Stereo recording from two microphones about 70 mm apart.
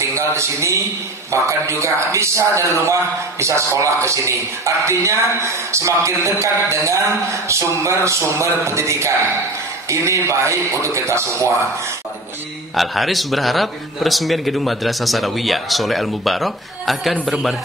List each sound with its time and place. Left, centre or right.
0.0 s speech: right
12.7 s a man's voice: centre